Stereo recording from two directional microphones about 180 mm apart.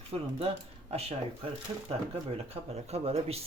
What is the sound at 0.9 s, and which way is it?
Speech, 35° right (ahead or behind).